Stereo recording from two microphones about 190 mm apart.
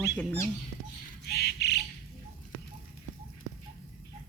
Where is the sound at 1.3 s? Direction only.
60° left (ahead or behind).